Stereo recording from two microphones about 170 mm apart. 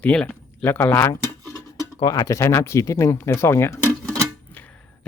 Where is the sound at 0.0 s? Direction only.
5° left (ahead or behind).